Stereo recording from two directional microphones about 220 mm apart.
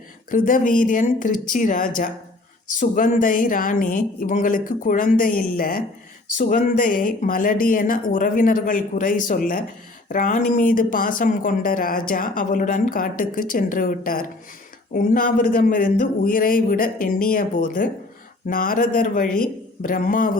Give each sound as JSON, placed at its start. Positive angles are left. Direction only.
{"t": 0.3, "sound": "speech", "side_deg": 40}